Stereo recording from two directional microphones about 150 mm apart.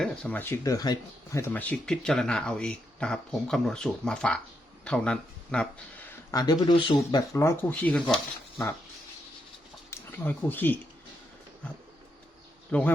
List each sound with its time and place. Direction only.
0.0 s speech: 5° left (ahead or behind)
6.3 s speech: 25° left (ahead or behind); by 8.6 s 5° left (ahead or behind)
9.9 s speech: 15° left (ahead or behind)
12.7 s speech: 10° left (ahead or behind)